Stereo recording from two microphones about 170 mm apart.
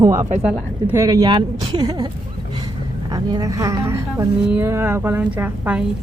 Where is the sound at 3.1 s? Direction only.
20° right (ahead or behind).